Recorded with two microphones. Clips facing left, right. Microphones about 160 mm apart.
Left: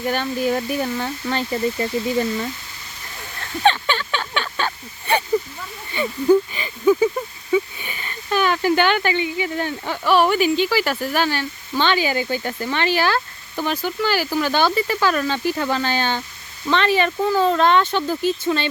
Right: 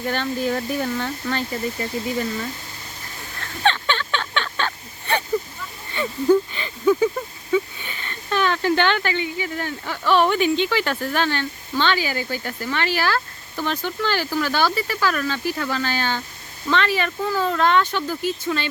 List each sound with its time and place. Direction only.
0.0 s speech: 10° left (ahead or behind)
1.8 s speech: 30° left (ahead or behind)
3.6 s a sound: 10° left (ahead or behind)
5.9 s speech: 10° left (ahead or behind)
10.1 s speech: 5° left (ahead or behind); by 13.7 s 20° left (ahead or behind)
13.7 s speech: 10° left (ahead or behind); by 18.7 s 25° left (ahead or behind)